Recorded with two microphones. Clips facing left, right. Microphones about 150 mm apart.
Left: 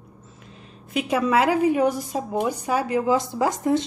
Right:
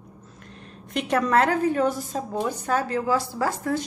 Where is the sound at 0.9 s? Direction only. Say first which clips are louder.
Left 1 dB; 5° left (ahead or behind); by 3.9 s 20° left (ahead or behind).